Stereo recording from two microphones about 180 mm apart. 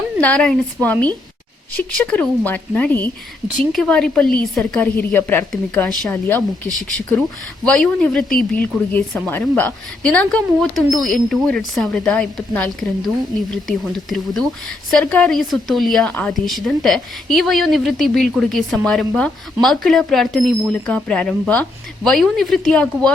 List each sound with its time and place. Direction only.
0.2 s speech: 5° left (ahead or behind)
8.3 s speech: 55° left (ahead or behind)
8.6 s speech: 10° left (ahead or behind)